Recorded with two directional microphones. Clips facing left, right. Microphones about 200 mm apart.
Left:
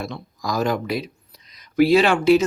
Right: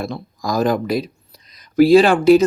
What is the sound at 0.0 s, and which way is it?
Speech, 35° right (ahead or behind).